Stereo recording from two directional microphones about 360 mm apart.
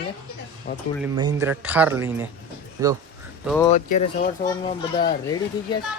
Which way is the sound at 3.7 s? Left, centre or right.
Left.